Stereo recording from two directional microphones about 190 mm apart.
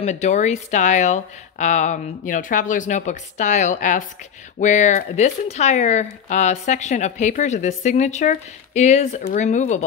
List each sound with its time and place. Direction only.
0.0 s speech: 35° left (ahead or behind)